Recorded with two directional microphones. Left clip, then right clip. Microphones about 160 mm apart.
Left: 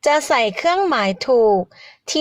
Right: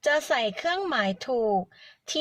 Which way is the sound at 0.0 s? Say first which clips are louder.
Left 8 dB; 25° left (ahead or behind).